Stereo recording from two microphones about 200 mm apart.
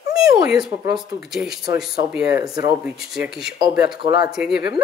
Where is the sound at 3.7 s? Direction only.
20° right (ahead or behind).